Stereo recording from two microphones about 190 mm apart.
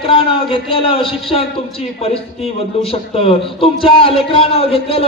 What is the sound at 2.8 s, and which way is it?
A man's voice, 30° left (ahead or behind).